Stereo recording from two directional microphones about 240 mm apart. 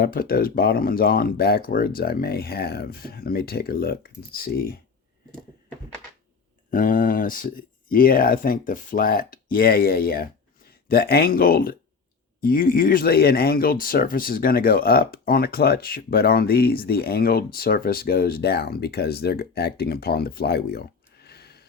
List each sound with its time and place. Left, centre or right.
0.0 s speech: left
6.7 s speech: left